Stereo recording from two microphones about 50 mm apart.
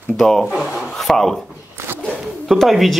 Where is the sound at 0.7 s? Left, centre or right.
Centre.